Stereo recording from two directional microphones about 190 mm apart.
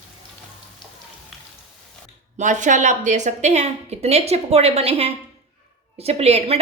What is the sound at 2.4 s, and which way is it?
A woman's voice, 40° right (ahead or behind).